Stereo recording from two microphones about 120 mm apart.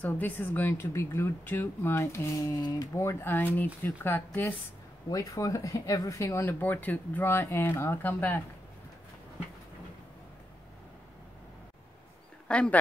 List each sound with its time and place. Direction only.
0.0 s speech: 15° left (ahead or behind)
5.1 s speech: 30° left (ahead or behind)
12.4 s speech: 10° left (ahead or behind)